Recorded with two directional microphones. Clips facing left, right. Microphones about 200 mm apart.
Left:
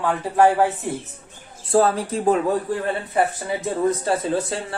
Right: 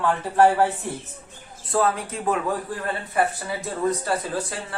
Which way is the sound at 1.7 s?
35° left (ahead or behind).